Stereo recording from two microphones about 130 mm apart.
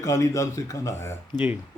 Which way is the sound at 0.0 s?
25° left (ahead or behind).